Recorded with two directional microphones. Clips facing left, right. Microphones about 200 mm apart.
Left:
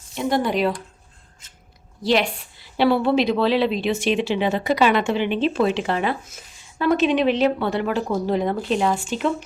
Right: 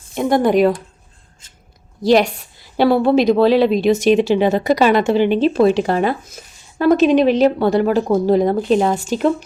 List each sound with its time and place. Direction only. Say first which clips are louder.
0.1 s speech: right 7 dB; 50° right (ahead or behind)
2.0 s speech: right 7 dB; 45° right (ahead or behind)